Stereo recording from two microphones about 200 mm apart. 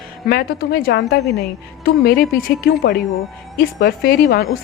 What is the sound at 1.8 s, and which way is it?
Speech, 50° left (ahead or behind).